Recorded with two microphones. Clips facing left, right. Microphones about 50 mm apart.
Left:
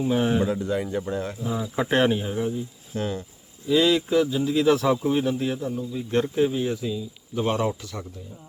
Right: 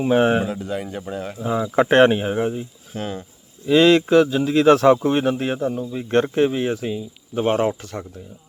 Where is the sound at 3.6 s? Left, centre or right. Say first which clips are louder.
Right 6 dB; right.